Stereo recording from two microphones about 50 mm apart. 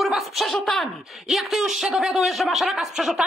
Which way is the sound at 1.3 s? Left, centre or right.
Centre.